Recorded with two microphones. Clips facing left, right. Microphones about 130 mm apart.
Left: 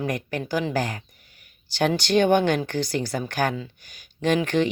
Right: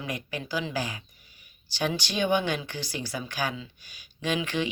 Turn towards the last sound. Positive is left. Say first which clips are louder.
# left 7 dB
turn(degrees=50)  # may be behind; listen again after turning